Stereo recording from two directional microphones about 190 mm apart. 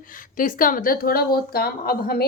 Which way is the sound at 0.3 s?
45° left (ahead or behind).